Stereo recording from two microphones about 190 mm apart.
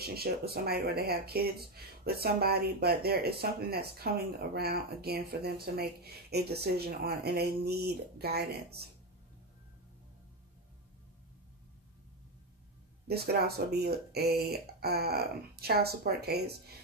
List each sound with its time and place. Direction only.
0.0 s speech: 55° right (ahead or behind)
13.1 s speech: 55° right (ahead or behind)